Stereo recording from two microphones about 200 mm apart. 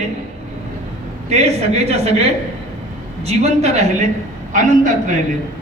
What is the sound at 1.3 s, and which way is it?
Speech, 30° right (ahead or behind).